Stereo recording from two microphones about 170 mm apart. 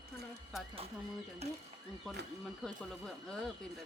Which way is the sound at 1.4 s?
40° right (ahead or behind).